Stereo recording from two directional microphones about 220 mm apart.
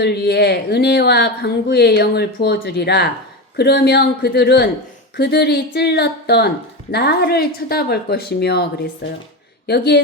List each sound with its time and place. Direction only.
0.0 s speech: 50° left (ahead or behind)